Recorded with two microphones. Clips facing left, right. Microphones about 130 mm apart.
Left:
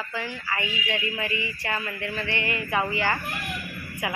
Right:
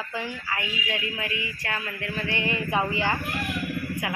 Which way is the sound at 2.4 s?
20° right (ahead or behind).